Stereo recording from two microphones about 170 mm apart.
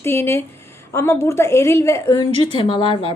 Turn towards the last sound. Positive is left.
turn(degrees=30)  # may be behind; listen again after turning